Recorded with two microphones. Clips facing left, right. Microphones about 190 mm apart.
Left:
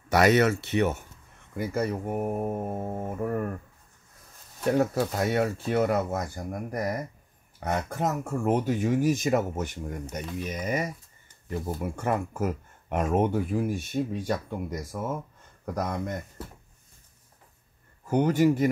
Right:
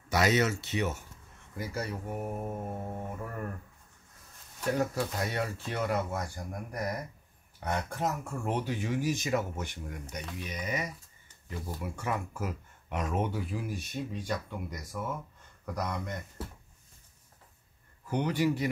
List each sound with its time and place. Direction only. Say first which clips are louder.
0.1 s speech: left 6 dB; 60° left (ahead or behind)
4.7 s speech: left 6 dB; 55° left (ahead or behind)
18.0 s speech: left 7 dB; 45° left (ahead or behind)